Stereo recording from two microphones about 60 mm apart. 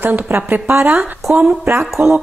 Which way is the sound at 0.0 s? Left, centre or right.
Right.